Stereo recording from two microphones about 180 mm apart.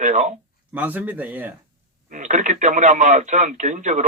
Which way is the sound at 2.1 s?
45° right (ahead or behind).